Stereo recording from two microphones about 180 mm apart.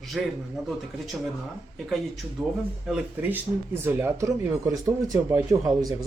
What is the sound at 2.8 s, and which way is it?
Speech, 5° right (ahead or behind).